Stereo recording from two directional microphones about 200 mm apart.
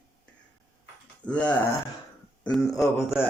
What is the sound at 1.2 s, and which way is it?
Speech, 5° left (ahead or behind).